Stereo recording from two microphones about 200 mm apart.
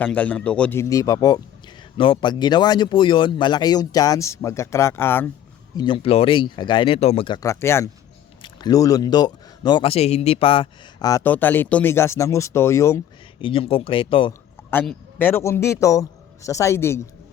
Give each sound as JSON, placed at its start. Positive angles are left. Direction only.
{"t": 0.0, "sound": "speech", "side_deg": 5}
{"t": 5.7, "sound": "speech", "side_deg": 25}
{"t": 13.4, "sound": "speech", "side_deg": 25}
{"t": 14.7, "sound": "a man's voice", "side_deg": 10}